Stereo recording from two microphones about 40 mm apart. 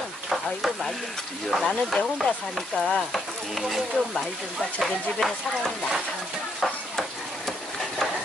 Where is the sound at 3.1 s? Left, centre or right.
Centre.